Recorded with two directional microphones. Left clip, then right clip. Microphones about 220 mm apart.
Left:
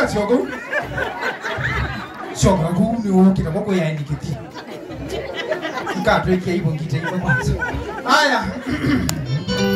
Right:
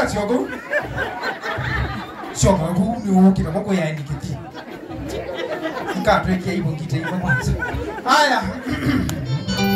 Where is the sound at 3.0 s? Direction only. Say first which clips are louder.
Right 1 dB; 25° right (ahead or behind).